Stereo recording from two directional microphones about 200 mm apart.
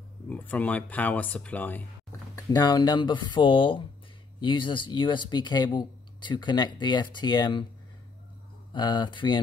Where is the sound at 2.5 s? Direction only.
20° left (ahead or behind).